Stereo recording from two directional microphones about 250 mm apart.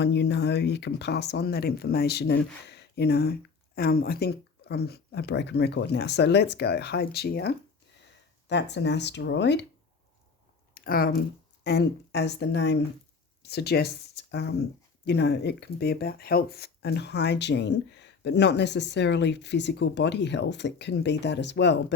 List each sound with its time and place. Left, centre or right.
0.0 s speech: left
10.8 s speech: left